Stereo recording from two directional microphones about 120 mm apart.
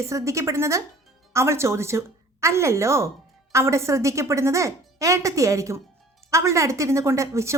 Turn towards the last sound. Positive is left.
turn(degrees=-25)  # may be behind; listen again after turning